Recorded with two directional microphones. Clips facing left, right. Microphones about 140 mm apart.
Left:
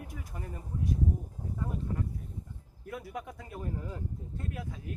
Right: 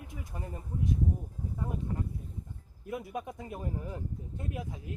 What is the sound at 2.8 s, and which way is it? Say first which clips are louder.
Speech: right 3 dB; 20° right (ahead or behind).